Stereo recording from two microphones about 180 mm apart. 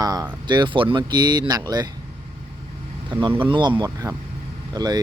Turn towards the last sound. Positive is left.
turn(degrees=-25)  # may be behind; listen again after turning